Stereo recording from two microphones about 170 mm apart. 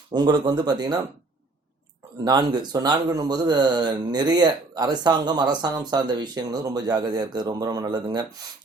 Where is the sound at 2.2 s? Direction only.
25° right (ahead or behind).